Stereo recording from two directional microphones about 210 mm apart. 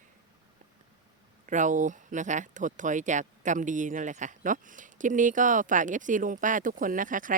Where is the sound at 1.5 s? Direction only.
35° right (ahead or behind).